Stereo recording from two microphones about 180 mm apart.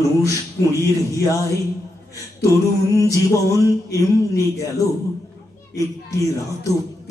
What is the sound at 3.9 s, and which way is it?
Speech, 20° left (ahead or behind).